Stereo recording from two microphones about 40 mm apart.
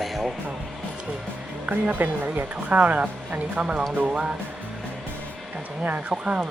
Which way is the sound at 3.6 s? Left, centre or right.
Right.